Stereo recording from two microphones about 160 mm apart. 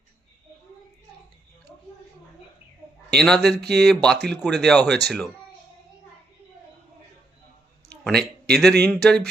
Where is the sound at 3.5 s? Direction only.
90° right.